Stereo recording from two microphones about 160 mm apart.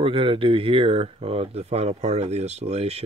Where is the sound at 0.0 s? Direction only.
35° right (ahead or behind).